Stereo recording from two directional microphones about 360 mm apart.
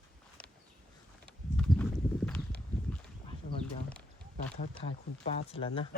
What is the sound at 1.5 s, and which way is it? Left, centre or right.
Clip-clop, centre.